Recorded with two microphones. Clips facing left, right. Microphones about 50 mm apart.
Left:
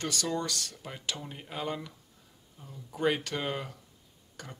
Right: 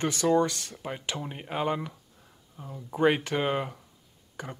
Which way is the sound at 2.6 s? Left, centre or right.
Right.